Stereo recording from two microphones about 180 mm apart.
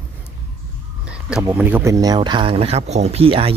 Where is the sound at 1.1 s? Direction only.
5° right (ahead or behind).